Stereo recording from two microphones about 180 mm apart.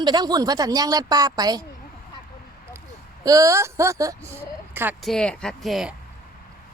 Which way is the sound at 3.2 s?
20° right (ahead or behind).